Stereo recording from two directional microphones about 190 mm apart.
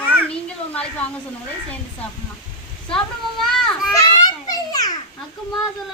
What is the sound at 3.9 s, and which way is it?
Children playing, 20° left (ahead or behind).